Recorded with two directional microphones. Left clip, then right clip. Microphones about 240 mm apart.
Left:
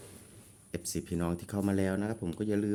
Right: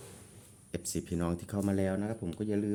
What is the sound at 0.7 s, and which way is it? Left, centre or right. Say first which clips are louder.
Speech: even; centre.